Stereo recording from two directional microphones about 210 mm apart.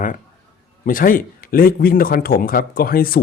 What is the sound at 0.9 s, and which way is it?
Speech, 40° left (ahead or behind).